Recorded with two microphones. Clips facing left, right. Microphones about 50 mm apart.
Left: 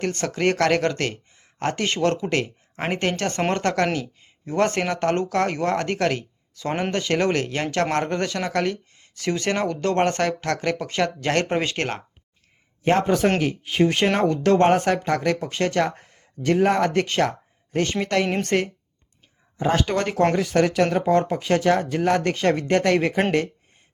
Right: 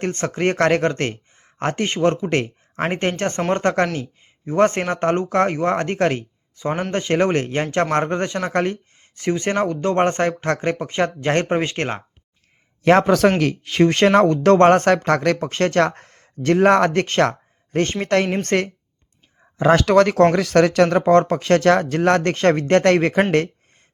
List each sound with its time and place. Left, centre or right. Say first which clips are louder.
0.0 s speech: right 2 dB; right
12.8 s speech: right 5 dB; right
13.4 s speech: right 4 dB; right
19.5 s speech: right 8 dB; right